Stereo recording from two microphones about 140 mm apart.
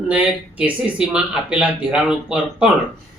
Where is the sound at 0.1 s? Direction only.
10° right (ahead or behind).